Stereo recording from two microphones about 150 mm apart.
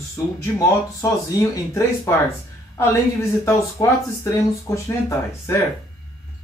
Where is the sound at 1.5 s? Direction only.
20° left (ahead or behind).